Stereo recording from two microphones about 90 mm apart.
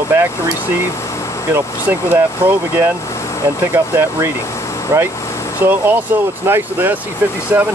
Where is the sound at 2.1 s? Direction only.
25° right (ahead or behind).